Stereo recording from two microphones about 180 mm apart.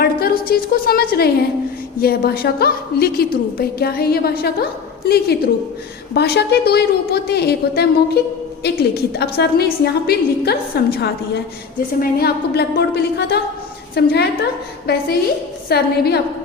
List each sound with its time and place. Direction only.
0.0 s a woman's voice: 55° left (ahead or behind)
15.7 s a woman's voice: 65° left (ahead or behind)